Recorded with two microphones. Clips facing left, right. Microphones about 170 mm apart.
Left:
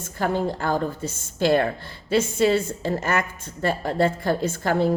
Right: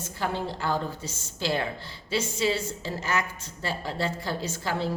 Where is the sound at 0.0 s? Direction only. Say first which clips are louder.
Left 6 dB; 50° left (ahead or behind).